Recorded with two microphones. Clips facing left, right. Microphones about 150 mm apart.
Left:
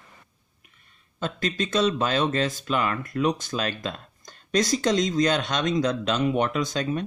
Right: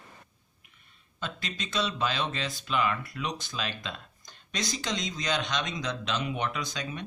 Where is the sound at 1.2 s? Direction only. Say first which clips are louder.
Left 9 dB; 45° left (ahead or behind).